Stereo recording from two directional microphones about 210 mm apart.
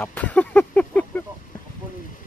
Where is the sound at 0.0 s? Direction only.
5° left (ahead or behind).